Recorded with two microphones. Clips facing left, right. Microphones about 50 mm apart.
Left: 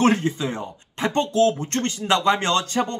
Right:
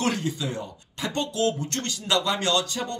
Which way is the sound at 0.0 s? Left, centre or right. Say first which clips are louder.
Left 7 dB; left.